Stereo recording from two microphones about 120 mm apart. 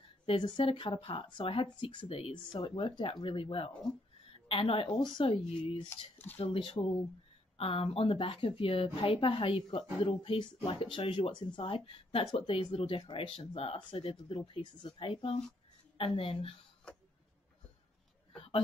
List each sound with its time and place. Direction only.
0.3 s a woman's voice: 50° left (ahead or behind)
4.8 s a woman's voice: 35° left (ahead or behind)